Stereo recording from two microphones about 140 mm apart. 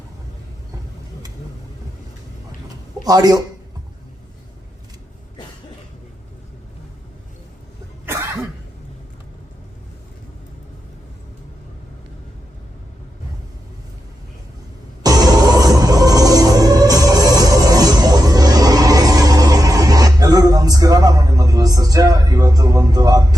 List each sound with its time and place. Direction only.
3.0 s a man's voice: 30° right (ahead or behind)
8.0 s cough: 20° right (ahead or behind)
15.0 s music: 25° right (ahead or behind)